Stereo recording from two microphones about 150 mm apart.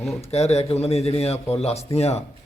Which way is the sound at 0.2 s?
45° left (ahead or behind).